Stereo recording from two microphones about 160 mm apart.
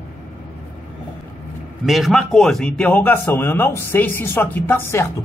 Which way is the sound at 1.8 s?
Centre (ahead or behind).